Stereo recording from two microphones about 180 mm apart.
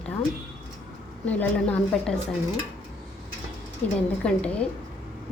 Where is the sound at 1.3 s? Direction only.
10° left (ahead or behind).